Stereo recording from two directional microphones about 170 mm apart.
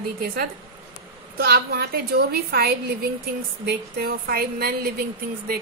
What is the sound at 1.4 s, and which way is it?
A woman's voice, 65° right (ahead or behind).